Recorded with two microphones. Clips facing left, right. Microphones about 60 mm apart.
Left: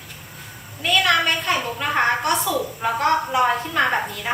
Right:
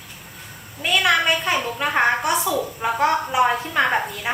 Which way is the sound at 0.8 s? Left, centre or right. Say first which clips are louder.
Even; centre.